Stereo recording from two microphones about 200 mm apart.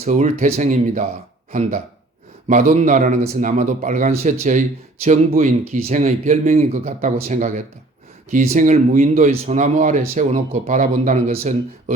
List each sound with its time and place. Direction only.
0.0 s speech: 35° right (ahead or behind)
2.5 s speech: 40° right (ahead or behind)